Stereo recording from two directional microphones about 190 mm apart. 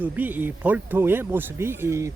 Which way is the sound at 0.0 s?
10° right (ahead or behind).